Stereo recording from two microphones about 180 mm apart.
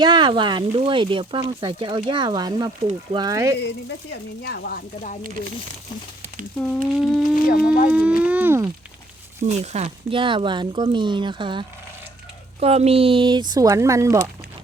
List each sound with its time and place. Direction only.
0.0 s speech: 25° right (ahead or behind)
3.8 s speech: 70° left (ahead or behind)
6.6 s speech: 5° left (ahead or behind)
7.2 s a sound: 50° left (ahead or behind)
7.9 s speech: 5° right (ahead or behind)
9.4 s speech: 40° right (ahead or behind); by 14.3 s 15° right (ahead or behind)